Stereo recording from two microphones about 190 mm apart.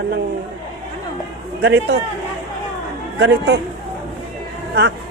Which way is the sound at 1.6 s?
60° right (ahead or behind).